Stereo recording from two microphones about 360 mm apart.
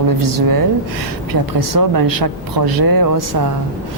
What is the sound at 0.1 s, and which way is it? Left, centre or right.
A woman's voice, right.